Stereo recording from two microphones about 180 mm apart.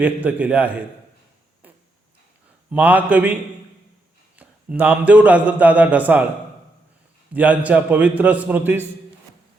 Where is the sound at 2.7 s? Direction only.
10° right (ahead or behind).